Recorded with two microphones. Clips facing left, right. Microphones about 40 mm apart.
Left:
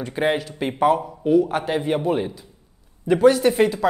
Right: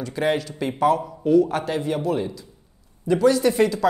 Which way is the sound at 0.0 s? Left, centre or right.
Left.